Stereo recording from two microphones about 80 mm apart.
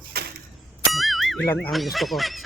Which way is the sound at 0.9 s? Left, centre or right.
Centre.